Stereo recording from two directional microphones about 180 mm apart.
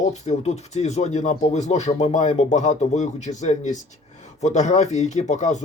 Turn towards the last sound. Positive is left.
turn(degrees=40)  # may be behind; listen again after turning